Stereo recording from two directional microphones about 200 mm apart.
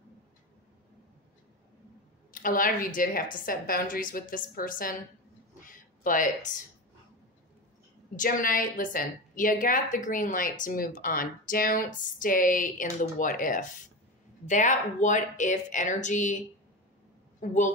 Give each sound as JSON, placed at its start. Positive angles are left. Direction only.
{"t": 2.4, "sound": "a woman's voice", "side_deg": 45}
{"t": 5.6, "sound": "a sound", "side_deg": 40}
{"t": 8.2, "sound": "a woman's voice", "side_deg": 45}
{"t": 17.4, "sound": "a woman's voice", "side_deg": 40}